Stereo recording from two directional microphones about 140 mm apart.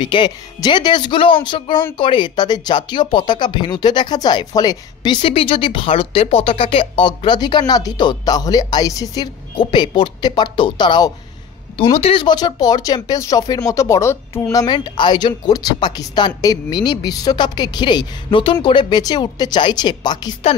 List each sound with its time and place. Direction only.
0.0 s speech: 35° left (ahead or behind)
11.9 s speech: 45° left (ahead or behind)